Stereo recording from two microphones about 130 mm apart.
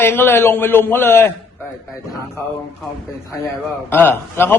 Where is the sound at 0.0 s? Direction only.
15° left (ahead or behind).